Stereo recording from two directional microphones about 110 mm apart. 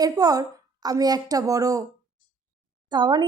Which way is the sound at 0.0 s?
35° right (ahead or behind).